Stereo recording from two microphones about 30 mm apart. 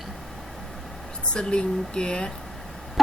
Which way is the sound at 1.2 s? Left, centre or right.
Left.